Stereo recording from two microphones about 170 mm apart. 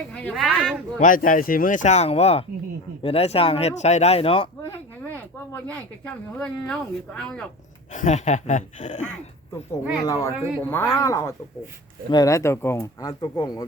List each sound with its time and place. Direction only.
0.1 s speech: 5° left (ahead or behind)
0.9 s speech: 50° left (ahead or behind); by 4.4 s 35° left (ahead or behind)
4.7 s a sound: 10° left (ahead or behind)
6.4 s speech: 5° left (ahead or behind)
7.9 s speech: 45° left (ahead or behind)
10.0 s speech: 20° left (ahead or behind)
10.6 s speech: 10° left (ahead or behind)